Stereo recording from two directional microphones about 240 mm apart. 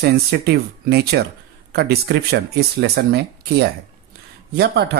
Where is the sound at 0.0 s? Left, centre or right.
Right.